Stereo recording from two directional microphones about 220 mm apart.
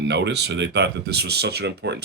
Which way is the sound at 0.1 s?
50° right (ahead or behind).